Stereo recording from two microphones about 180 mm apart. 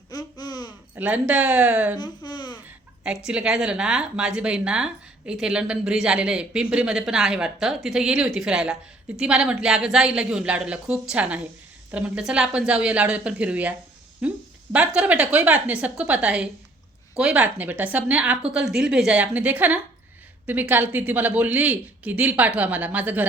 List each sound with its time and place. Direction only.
0.1 s babbling: 20° left (ahead or behind)
0.9 s speech: 10° right (ahead or behind)
2.0 s babbling: 25° left (ahead or behind)
3.2 s a woman's voice: 5° right (ahead or behind)